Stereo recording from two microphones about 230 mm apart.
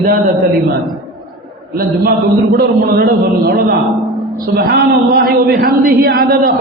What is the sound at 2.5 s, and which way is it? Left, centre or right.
Speech, right.